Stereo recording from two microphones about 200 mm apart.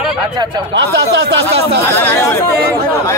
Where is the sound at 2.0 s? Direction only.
10° left (ahead or behind).